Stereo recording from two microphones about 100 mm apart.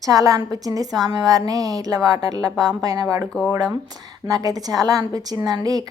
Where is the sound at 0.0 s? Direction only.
35° right (ahead or behind).